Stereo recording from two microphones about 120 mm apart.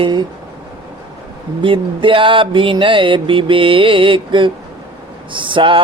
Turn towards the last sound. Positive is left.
turn(degrees=-45)  # may be behind; listen again after turning